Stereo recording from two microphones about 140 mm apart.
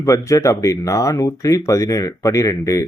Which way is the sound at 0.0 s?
25° left (ahead or behind).